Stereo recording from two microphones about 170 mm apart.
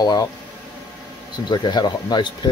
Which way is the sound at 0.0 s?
25° left (ahead or behind).